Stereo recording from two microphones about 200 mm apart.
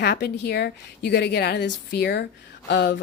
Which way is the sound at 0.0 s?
55° left (ahead or behind).